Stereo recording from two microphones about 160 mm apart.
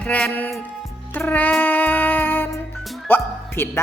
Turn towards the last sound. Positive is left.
turn(degrees=15)  # may be behind; listen again after turning